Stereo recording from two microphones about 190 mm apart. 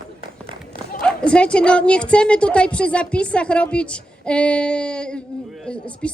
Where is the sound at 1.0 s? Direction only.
5° left (ahead or behind).